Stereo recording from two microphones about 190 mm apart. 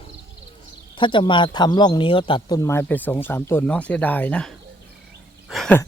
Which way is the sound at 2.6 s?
15° left (ahead or behind).